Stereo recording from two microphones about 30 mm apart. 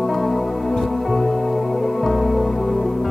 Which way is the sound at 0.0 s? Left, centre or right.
Centre.